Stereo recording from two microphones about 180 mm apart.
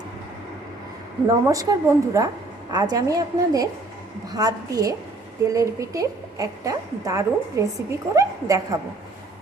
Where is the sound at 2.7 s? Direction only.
20° right (ahead or behind).